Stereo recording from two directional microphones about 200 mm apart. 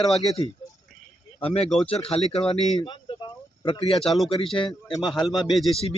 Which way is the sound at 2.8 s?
25° left (ahead or behind).